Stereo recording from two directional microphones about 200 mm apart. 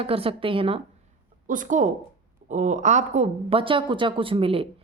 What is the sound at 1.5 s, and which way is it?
Speech, 40° right (ahead or behind).